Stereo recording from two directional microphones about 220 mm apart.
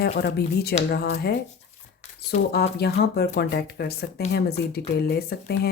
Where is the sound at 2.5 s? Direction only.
45° left (ahead or behind).